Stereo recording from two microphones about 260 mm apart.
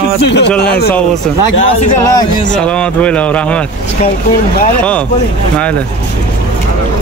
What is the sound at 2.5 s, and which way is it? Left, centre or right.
Speech, centre.